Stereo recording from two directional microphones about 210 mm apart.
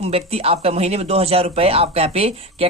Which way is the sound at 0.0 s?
30° right (ahead or behind).